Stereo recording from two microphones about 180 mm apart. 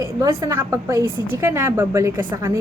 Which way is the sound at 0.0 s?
15° right (ahead or behind).